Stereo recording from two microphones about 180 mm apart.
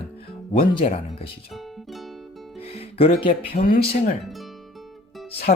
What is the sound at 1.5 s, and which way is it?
Music, centre (ahead or behind).